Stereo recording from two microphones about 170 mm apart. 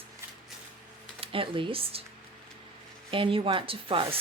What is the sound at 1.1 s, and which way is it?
Speech, 30° right (ahead or behind).